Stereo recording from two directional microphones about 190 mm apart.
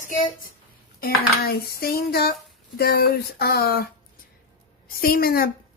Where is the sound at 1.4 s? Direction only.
55° left (ahead or behind).